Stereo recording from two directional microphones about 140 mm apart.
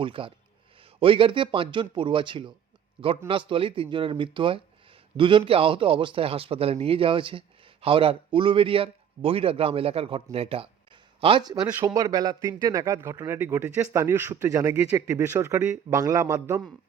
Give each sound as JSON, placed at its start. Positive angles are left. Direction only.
{"t": 0.0, "sound": "a man's voice", "side_deg": -40}